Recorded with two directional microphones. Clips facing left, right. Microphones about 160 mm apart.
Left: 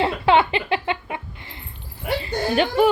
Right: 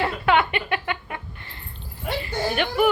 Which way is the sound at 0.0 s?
25° left (ahead or behind).